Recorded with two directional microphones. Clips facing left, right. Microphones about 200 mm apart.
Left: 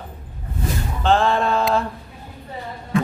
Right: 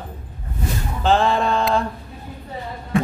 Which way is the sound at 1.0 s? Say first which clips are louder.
Even; centre (ahead or behind).